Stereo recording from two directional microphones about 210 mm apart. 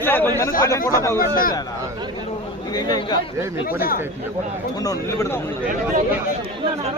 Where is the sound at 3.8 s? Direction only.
45° left (ahead or behind).